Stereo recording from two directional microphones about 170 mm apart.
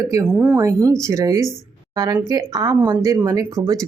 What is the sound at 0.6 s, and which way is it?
Speech, 20° right (ahead or behind).